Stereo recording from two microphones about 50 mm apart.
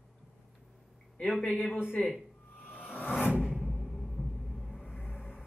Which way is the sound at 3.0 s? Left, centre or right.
Left.